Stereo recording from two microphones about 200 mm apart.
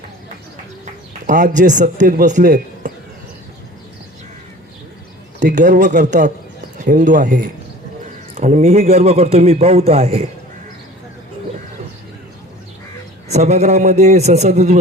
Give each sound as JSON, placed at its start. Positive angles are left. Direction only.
{"t": 1.3, "sound": "a man's voice", "side_deg": -40}
{"t": 5.5, "sound": "a man's voice", "side_deg": -40}
{"t": 8.4, "sound": "a man's voice", "side_deg": -35}
{"t": 13.2, "sound": "a man's voice", "side_deg": -35}